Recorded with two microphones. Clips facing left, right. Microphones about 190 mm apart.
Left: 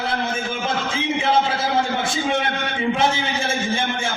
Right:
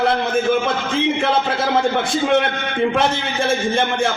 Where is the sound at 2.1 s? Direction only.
60° right (ahead or behind).